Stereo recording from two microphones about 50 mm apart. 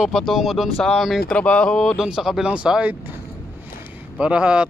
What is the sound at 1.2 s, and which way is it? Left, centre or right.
Speech, left.